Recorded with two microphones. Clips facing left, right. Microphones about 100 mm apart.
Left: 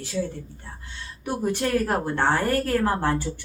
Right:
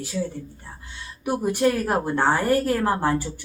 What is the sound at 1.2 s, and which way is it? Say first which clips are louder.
Speech: right 4 dB; 10° right (ahead or behind).